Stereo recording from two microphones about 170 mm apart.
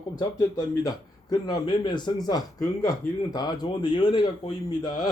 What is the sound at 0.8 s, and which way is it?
Speech, 25° left (ahead or behind).